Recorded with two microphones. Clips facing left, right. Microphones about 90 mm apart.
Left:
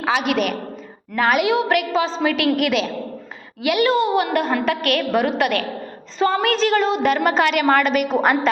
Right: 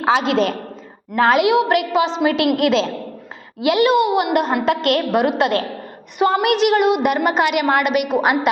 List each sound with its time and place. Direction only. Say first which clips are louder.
0.0 s a woman's voice: right 3 dB; 25° right (ahead or behind); by 8.4 s 10° right (ahead or behind)